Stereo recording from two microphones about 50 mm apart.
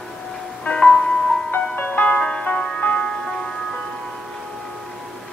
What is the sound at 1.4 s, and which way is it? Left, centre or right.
Music, left.